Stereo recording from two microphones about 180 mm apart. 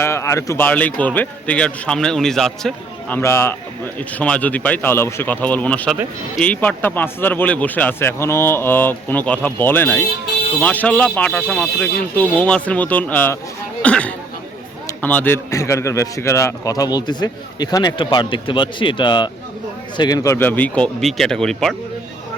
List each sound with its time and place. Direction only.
0.0 s speech: 15° left (ahead or behind)
3.2 s speech: 15° left (ahead or behind)